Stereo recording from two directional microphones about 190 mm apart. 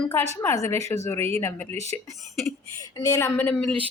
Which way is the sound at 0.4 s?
15° left (ahead or behind).